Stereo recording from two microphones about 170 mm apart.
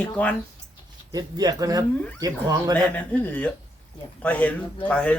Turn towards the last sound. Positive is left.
turn(degrees=10)  # may be behind; listen again after turning